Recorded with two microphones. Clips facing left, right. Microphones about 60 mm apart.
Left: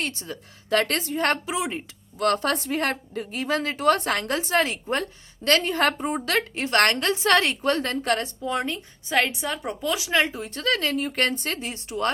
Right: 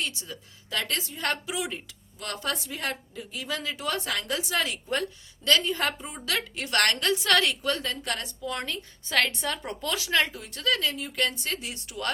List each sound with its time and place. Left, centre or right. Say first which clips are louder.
0.0 s a woman's voice: left 3 dB; left
1.5 s a woman's voice: left 5 dB; left
2.1 s a woman's voice: left 10 dB; left
5.5 s a woman's voice: left 4 dB; left
8.4 s a woman's voice: left 6 dB; left
10.1 s a woman's voice: left 2 dB; left